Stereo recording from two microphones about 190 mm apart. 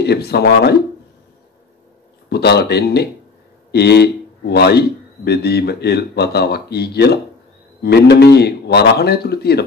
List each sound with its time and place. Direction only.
0.0 s speech: 60° left (ahead or behind)
2.2 s speech: 60° left (ahead or behind)